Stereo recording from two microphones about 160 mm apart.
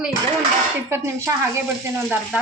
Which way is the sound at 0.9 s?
15° right (ahead or behind).